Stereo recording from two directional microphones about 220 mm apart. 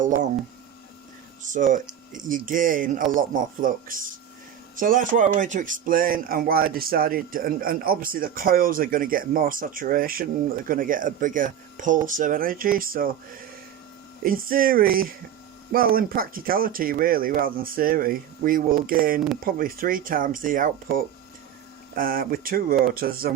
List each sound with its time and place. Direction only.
1.4 s speech: 35° right (ahead or behind)
14.3 s speech: 40° right (ahead or behind)